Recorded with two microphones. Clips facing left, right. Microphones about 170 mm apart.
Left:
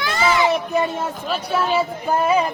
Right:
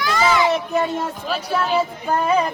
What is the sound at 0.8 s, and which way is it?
A woman's voice, centre (ahead or behind).